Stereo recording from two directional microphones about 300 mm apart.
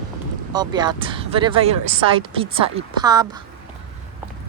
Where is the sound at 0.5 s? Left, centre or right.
Centre.